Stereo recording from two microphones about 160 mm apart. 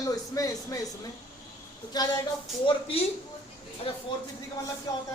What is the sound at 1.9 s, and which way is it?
Speech, 25° left (ahead or behind).